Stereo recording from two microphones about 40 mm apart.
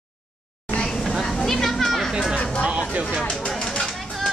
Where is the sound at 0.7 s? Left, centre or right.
Centre.